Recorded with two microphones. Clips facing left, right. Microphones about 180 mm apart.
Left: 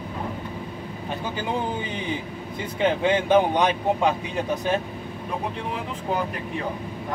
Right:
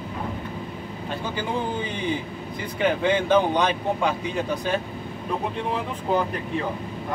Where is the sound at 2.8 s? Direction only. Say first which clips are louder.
Even; 20° left (ahead or behind).